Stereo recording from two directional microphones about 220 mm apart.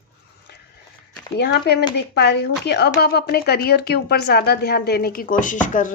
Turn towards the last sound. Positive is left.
turn(degrees=35)  # may be behind; listen again after turning